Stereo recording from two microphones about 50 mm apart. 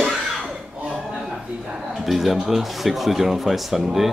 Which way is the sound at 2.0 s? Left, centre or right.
Centre.